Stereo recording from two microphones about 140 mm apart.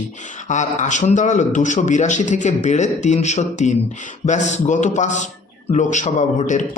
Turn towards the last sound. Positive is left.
turn(degrees=60)  # may be behind; listen again after turning